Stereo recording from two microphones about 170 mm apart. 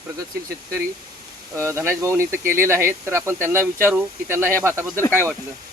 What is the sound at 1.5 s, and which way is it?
Speech, 15° right (ahead or behind).